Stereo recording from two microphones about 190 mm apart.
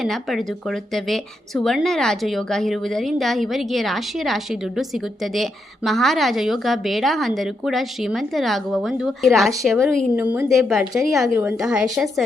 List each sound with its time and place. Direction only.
0.0 s a woman's voice: centre (ahead or behind)
10.2 s a woman's voice: 10° right (ahead or behind)